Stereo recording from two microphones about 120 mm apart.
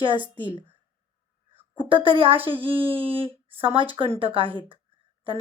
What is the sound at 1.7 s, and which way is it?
A woman's voice, 45° right (ahead or behind).